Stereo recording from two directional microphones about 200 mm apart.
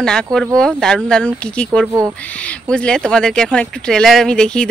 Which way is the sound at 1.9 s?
15° right (ahead or behind).